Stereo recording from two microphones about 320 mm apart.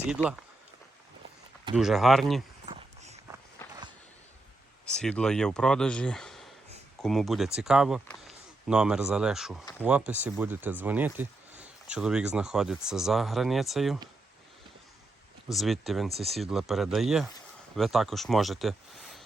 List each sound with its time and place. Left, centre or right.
0.1 s speech: centre
1.7 s speech: centre
2.6 s a sound: centre
4.9 s speech: centre
15.4 s speech: centre